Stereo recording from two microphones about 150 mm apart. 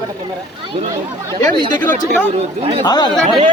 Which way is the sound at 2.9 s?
25° left (ahead or behind).